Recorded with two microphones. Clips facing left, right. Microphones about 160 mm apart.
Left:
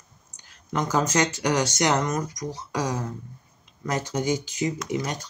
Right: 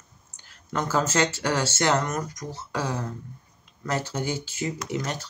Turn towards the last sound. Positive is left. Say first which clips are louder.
# left 2 dB
turn(degrees=15)  # may be behind; listen again after turning